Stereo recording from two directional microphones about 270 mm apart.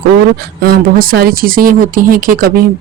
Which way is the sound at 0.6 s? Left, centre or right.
Right.